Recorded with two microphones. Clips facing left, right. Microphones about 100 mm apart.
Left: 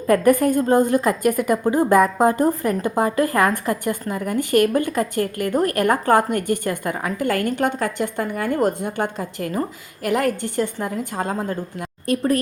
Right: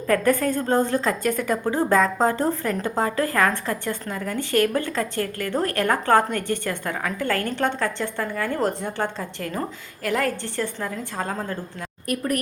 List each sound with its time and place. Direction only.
0.1 s a woman's voice: 15° left (ahead or behind)